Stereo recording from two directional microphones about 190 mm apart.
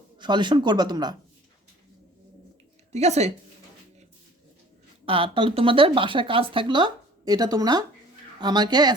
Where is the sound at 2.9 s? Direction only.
35° right (ahead or behind).